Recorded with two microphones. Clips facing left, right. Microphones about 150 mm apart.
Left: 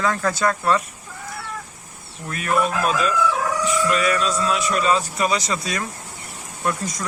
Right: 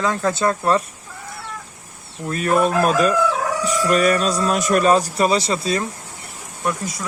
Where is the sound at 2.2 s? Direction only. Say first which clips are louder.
Right 4 dB; 35° right (ahead or behind).